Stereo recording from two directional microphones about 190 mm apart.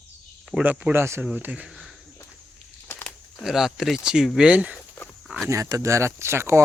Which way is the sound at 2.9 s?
10° left (ahead or behind).